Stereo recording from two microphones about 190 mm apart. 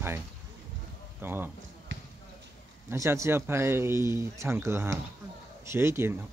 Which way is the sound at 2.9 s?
15° right (ahead or behind).